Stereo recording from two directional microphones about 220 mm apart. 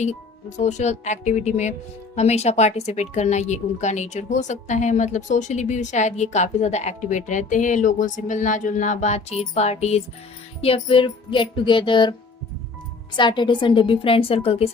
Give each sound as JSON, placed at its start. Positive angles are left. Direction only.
{"t": 0.0, "sound": "a woman's voice", "side_deg": 30}
{"t": 10.6, "sound": "child singing", "side_deg": 25}
{"t": 13.1, "sound": "child singing", "side_deg": 20}